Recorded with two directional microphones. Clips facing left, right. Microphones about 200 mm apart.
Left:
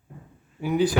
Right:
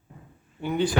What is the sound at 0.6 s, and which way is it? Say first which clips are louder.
Speech: left 3 dB; 5° left (ahead or behind).